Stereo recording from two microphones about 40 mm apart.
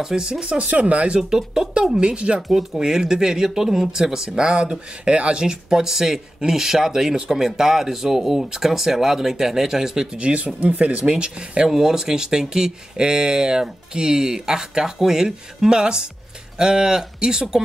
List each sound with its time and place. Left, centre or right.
0.0 s speech: centre; by 1.1 s right
1.1 s speech: centre
2.5 s speech: centre
10.1 s speech: right
11.1 s speech: right